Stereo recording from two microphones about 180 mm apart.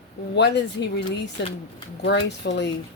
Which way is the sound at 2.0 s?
70° left (ahead or behind).